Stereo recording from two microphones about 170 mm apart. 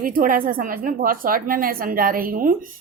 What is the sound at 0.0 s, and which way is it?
A woman's voice, 55° right (ahead or behind).